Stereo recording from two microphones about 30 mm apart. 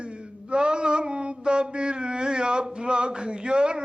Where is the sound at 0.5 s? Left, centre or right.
Right.